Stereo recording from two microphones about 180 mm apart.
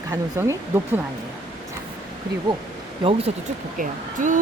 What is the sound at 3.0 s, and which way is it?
Speech, 30° right (ahead or behind).